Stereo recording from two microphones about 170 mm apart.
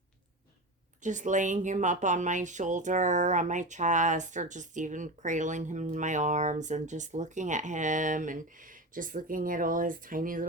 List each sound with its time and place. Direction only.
1.0 s speech: 45° right (ahead or behind)